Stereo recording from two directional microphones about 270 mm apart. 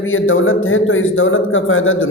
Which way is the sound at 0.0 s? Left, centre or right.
Left.